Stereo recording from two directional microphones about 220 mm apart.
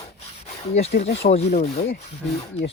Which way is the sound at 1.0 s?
30° left (ahead or behind).